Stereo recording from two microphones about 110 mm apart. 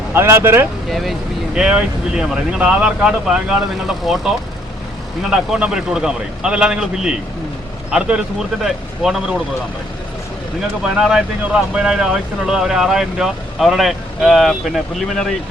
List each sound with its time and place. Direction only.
0.1 s speech: 20° right (ahead or behind)
0.9 s a man's voice: centre (ahead or behind)
10.8 s a man's voice: 5° right (ahead or behind)